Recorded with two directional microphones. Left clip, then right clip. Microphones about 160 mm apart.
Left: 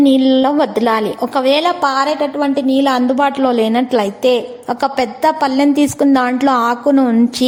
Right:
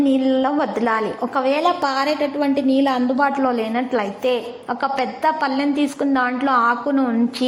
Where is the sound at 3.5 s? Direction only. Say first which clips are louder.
Left 7 dB; 40° left (ahead or behind).